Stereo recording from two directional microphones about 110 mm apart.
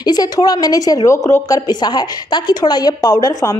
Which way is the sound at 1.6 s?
40° left (ahead or behind).